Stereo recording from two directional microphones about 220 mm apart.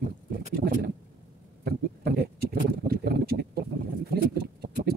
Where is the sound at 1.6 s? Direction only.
45° right (ahead or behind).